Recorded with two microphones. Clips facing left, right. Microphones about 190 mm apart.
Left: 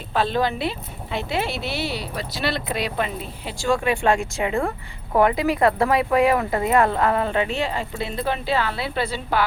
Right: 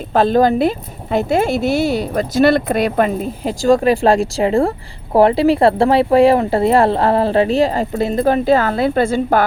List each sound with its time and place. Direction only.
0.1 s speech: 45° right (ahead or behind)